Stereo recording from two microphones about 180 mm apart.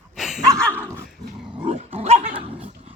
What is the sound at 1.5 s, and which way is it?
Dog, 30° right (ahead or behind).